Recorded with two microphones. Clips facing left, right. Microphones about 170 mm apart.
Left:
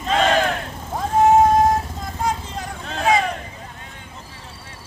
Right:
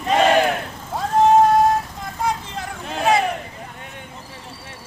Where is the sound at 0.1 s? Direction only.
15° right (ahead or behind).